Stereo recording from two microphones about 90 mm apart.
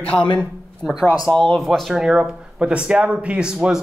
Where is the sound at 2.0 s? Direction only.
10° right (ahead or behind).